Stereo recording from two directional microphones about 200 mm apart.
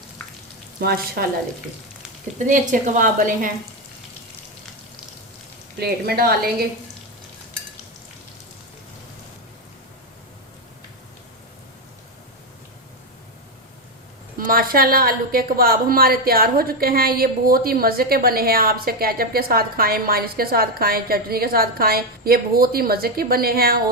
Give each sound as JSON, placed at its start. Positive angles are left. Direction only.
{"t": 0.8, "sound": "a woman's voice", "side_deg": -50}
{"t": 2.5, "sound": "a woman's voice", "side_deg": -40}
{"t": 5.8, "sound": "a woman's voice", "side_deg": -50}
{"t": 14.3, "sound": "a woman's voice", "side_deg": -45}